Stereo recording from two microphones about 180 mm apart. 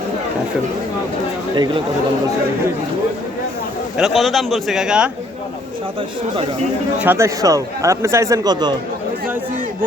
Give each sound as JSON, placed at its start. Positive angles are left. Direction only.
{"t": 3.9, "sound": "a man's voice", "side_deg": 0}
{"t": 7.0, "sound": "speech", "side_deg": -15}